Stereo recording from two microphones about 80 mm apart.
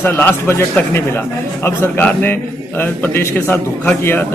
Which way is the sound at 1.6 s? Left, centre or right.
Left.